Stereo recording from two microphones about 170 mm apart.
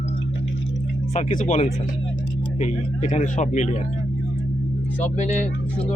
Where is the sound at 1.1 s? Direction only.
45° left (ahead or behind).